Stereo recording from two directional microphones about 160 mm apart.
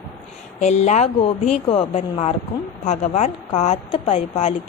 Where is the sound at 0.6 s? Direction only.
45° left (ahead or behind).